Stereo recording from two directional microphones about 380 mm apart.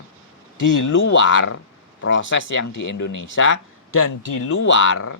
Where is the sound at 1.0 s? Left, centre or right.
Left.